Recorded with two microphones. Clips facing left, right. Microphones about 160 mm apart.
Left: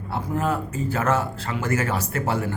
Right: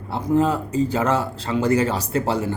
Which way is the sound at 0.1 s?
20° right (ahead or behind).